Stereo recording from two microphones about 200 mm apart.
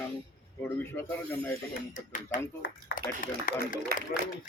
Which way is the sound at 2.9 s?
55° left (ahead or behind).